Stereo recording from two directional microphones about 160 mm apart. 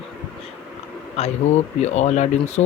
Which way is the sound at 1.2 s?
45° left (ahead or behind).